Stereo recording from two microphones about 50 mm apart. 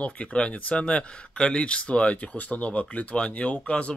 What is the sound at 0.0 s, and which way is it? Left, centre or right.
Speech, left.